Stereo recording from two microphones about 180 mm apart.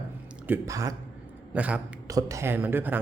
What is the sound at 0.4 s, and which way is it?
Speech, 15° right (ahead or behind).